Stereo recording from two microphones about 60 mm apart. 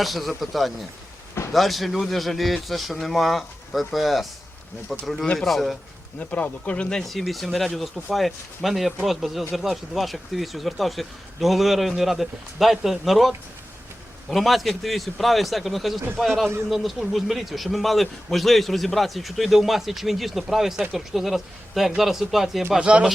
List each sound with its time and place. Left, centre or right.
0.0 s speech: centre
5.2 s speech: centre
5.5 s speech: centre
6.1 s speech: left
6.9 s speech: centre
22.9 s speech: centre